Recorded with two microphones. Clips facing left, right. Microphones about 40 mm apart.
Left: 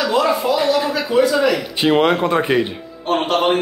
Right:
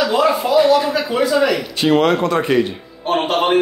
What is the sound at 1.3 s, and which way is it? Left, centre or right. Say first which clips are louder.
Speech: right 1 dB; centre.